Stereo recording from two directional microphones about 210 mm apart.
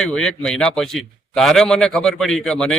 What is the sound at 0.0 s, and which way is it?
A man's voice, 5° left (ahead or behind).